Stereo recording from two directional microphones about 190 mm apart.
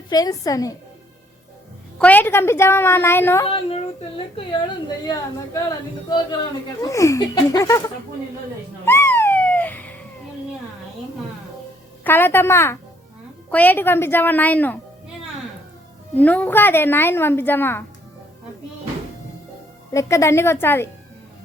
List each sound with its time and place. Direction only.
0.1 s a woman's voice: 20° left (ahead or behind)
2.0 s a woman's voice: 10° left (ahead or behind)
5.0 s a woman's voice: 20° left (ahead or behind)
8.8 s a sound: 10° left (ahead or behind)
12.0 s a woman's voice: 10° left (ahead or behind)
16.1 s a woman's voice: 10° left (ahead or behind)
19.9 s a woman's voice: 15° left (ahead or behind)